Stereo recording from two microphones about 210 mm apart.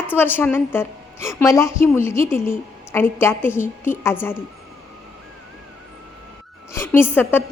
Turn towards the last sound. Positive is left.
turn(degrees=10)  # may be behind; listen again after turning